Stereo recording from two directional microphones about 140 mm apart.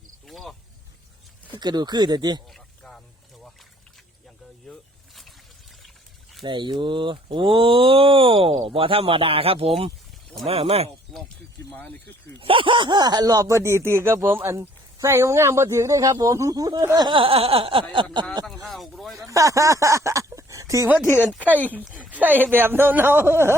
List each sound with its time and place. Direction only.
0.3 s cricket: centre (ahead or behind)
1.5 s speech: 30° right (ahead or behind)
2.5 s a sound: centre (ahead or behind)
4.7 s a sound: 5° left (ahead or behind)
6.4 s speech: 35° right (ahead or behind)
12.4 s speech: 40° right (ahead or behind)
18.4 s speech: centre (ahead or behind)
19.1 s speech: 25° right (ahead or behind)
21.2 s speech: 10° right (ahead or behind)